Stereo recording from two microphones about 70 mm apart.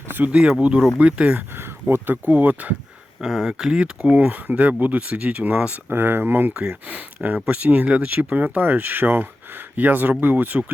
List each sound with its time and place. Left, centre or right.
0.1 s speech: right
1.5 s speech: right
3.2 s speech: centre
4.1 s speech: right
5.9 s speech: right
6.5 s speech: centre